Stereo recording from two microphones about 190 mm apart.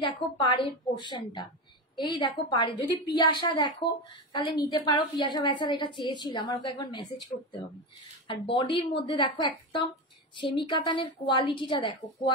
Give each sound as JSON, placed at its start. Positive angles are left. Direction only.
{"t": 0.0, "sound": "a woman's voice", "side_deg": 25}
{"t": 8.3, "sound": "a woman's voice", "side_deg": 25}